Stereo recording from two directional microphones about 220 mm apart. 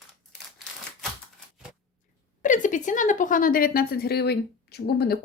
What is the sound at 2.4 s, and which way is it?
A woman's voice, 35° left (ahead or behind).